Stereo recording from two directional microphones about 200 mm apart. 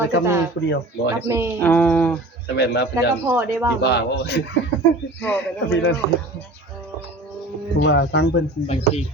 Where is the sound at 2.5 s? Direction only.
55° left (ahead or behind).